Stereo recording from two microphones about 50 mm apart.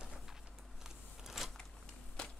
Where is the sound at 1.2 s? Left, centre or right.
Centre.